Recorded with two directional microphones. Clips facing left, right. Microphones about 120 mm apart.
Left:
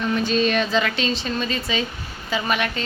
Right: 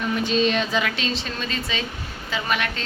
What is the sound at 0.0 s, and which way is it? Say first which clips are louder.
Speech: left 1 dB; 15° right (ahead or behind).